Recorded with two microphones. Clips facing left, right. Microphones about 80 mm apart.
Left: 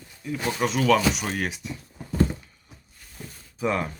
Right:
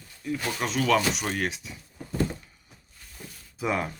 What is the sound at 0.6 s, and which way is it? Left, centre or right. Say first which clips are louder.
Speech: left 4 dB; centre.